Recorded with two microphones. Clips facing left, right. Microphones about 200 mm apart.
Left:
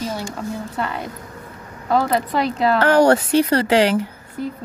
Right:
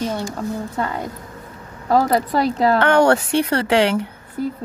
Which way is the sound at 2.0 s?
40° right (ahead or behind).